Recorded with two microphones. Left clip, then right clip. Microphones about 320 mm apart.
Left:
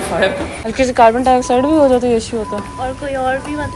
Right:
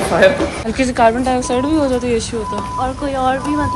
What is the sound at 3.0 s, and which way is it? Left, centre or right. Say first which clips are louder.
Speech: even; right.